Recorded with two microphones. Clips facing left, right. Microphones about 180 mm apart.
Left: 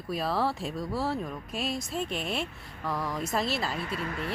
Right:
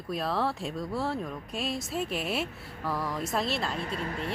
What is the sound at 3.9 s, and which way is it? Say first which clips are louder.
Speech: even; 30° right (ahead or behind).